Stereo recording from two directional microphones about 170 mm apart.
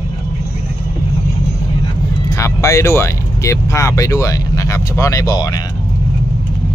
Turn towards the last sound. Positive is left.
turn(degrees=20)  # may be behind; listen again after turning